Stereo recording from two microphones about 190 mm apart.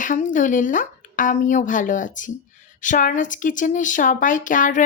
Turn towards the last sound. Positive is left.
turn(degrees=45)  # may be behind; listen again after turning